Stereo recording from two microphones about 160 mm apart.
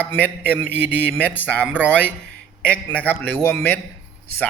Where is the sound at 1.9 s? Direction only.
10° left (ahead or behind).